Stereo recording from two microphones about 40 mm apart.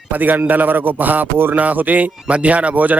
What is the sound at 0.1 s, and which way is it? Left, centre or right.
Speech, right.